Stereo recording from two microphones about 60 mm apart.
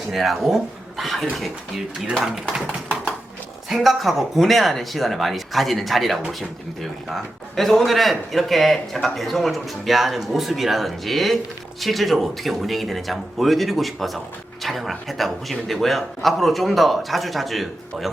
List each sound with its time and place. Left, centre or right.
0.1 s a man's voice: centre
3.7 s a man's voice: centre